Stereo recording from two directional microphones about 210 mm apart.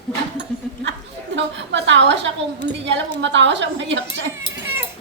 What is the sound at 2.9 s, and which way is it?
A woman's voice, 55° right (ahead or behind).